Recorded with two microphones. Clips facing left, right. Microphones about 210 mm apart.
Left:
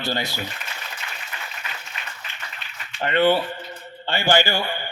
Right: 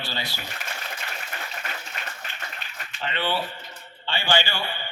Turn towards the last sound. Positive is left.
turn(degrees=40)  # may be behind; listen again after turning